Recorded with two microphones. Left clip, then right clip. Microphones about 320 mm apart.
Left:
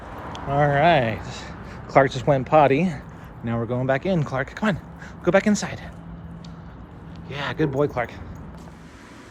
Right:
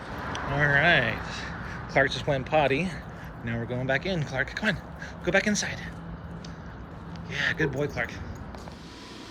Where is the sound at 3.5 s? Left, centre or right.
Left.